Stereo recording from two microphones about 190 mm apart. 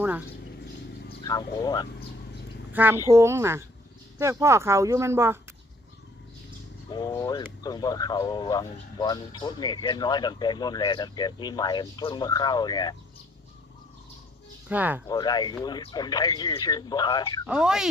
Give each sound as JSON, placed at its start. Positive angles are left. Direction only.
{"t": 1.2, "sound": "speech", "side_deg": 20}
{"t": 2.7, "sound": "speech", "side_deg": -10}
{"t": 6.9, "sound": "speech", "side_deg": 20}
{"t": 14.7, "sound": "speech", "side_deg": -10}
{"t": 15.0, "sound": "speech", "side_deg": 20}
{"t": 17.4, "sound": "speech", "side_deg": -5}